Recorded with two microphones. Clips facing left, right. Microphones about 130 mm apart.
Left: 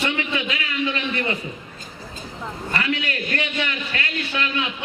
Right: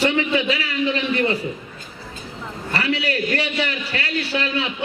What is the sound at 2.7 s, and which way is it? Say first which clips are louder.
A man's voice: right 3 dB; 35° right (ahead or behind).